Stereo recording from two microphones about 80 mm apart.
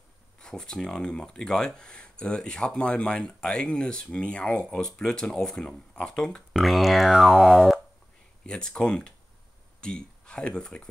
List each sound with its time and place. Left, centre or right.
0.4 s speech: centre
8.5 s speech: centre